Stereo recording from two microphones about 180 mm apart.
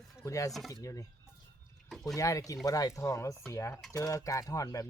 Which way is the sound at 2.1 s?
20° left (ahead or behind).